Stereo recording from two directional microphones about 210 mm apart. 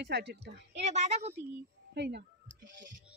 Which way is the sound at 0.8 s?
30° right (ahead or behind).